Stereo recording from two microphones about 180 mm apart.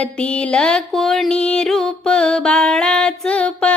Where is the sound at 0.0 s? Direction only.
5° left (ahead or behind).